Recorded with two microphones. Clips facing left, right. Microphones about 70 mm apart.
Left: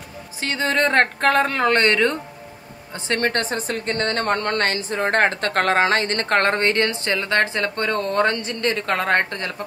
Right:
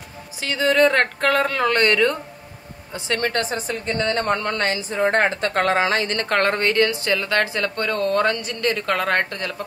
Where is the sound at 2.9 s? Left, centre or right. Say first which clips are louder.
Left 1 dB; left.